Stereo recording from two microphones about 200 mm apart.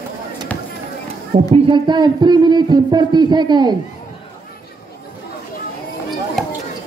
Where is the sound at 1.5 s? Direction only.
25° right (ahead or behind).